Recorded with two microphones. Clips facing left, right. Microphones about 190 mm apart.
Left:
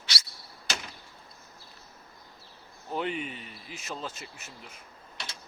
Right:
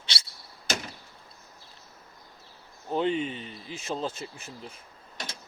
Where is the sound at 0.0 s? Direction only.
30° right (ahead or behind).